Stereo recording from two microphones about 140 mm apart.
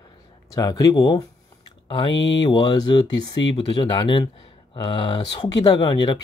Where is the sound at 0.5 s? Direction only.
25° left (ahead or behind).